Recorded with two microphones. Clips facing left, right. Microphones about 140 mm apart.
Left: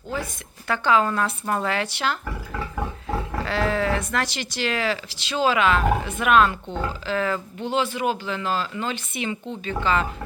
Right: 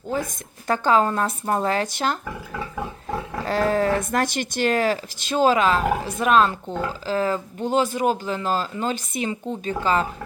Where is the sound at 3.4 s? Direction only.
45° right (ahead or behind).